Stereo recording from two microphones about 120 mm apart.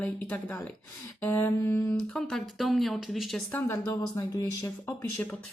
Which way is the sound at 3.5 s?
20° left (ahead or behind).